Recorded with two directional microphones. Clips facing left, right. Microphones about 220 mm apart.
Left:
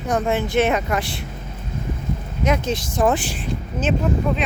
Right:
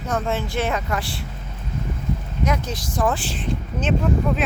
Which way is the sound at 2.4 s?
25° left (ahead or behind).